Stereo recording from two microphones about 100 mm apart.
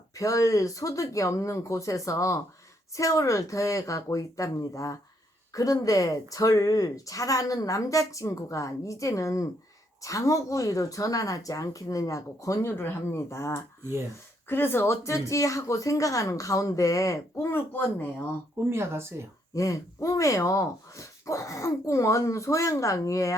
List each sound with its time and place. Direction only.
0.1 s speech: 35° left (ahead or behind)
18.7 s speech: 25° right (ahead or behind)
19.5 s speech: 30° left (ahead or behind)